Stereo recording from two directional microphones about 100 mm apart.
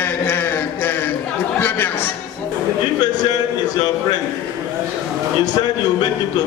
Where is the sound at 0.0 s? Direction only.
20° left (ahead or behind).